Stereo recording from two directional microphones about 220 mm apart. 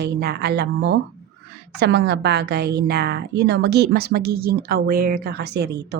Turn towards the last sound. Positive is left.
turn(degrees=-50)  # may be behind; listen again after turning